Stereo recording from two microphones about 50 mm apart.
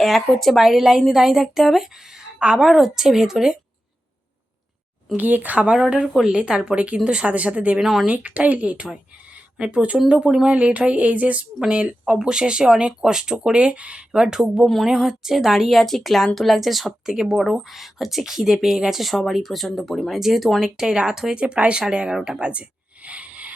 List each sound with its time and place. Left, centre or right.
0.0 s a woman's voice: centre
2.4 s a woman's voice: centre
2.6 s speech: centre
5.1 s speech: right
5.7 s speech: centre
7.8 s a woman's voice: centre
8.0 s speech: right
9.6 s a woman's voice: centre
20.7 s speech: centre
23.0 s a sound: right